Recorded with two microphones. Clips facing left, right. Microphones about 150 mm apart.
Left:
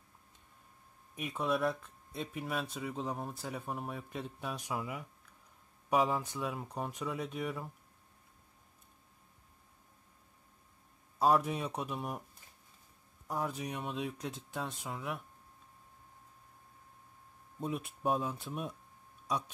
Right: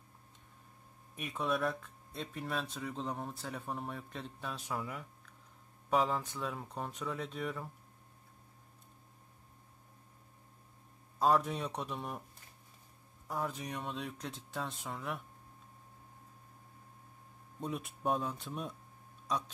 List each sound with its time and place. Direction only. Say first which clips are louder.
1.1 s speech: left 1 dB; centre (ahead or behind)
11.1 s speech: left 1 dB; 5° left (ahead or behind)
13.3 s speech: left 1 dB; 5° left (ahead or behind)
17.6 s speech: left 2 dB; 5° left (ahead or behind)